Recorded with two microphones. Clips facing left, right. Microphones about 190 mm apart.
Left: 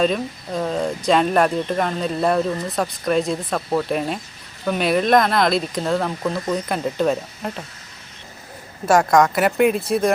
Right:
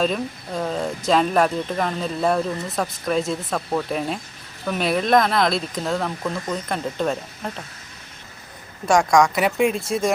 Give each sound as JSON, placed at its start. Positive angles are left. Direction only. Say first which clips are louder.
{"t": 0.0, "sound": "speech", "louder": "left 3 dB", "side_deg": 0}
{"t": 8.9, "sound": "speech", "louder": "left 1 dB", "side_deg": 5}